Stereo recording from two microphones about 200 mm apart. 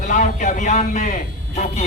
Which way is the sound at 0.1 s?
40° left (ahead or behind).